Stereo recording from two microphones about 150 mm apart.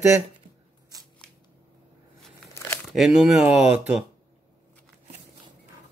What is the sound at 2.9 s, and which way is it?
Speech, 5° right (ahead or behind).